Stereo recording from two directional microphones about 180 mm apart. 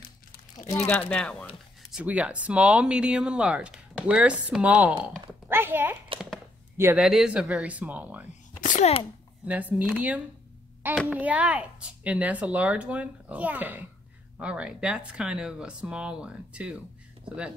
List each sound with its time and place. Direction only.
0.7 s speech: 15° left (ahead or behind)
0.9 s speech: 5° left (ahead or behind)
1.9 s speech: 5° right (ahead or behind)
8.5 s a sound: 45° left (ahead or behind)
9.5 s speech: 10° right (ahead or behind)